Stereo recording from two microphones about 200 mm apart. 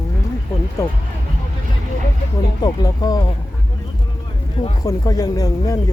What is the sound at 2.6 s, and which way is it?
Speech, 20° left (ahead or behind).